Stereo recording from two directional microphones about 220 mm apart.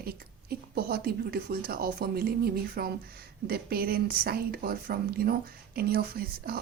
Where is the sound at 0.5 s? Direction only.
45° right (ahead or behind).